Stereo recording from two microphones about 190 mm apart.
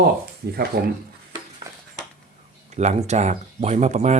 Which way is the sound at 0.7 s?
60° right (ahead or behind).